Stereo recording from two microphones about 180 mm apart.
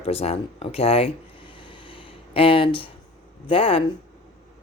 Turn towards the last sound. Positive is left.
turn(degrees=30)  # may be behind; listen again after turning